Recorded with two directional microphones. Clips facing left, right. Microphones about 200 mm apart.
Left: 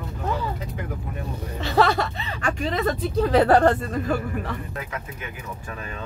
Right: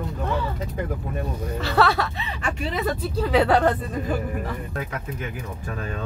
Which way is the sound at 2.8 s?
5° right (ahead or behind).